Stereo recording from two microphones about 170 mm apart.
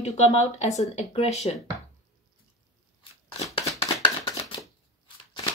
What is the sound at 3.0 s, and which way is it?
Crunch, 20° left (ahead or behind).